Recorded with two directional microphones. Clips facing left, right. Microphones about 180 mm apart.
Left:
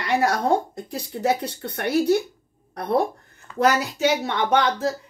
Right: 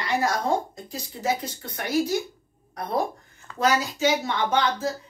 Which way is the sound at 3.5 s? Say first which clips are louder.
Left 3 dB; 65° left (ahead or behind).